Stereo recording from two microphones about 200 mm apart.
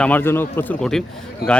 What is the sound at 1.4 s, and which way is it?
Speech, 50° left (ahead or behind).